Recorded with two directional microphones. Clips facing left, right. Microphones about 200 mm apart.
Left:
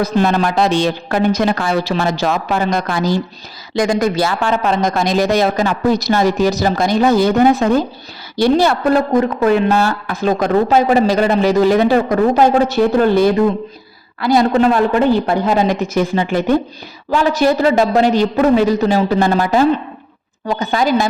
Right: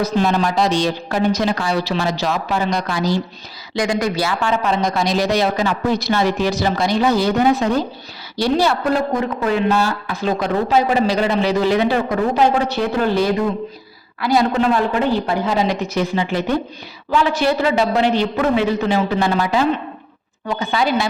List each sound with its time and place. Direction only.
0.0 s a woman's voice: 55° left (ahead or behind)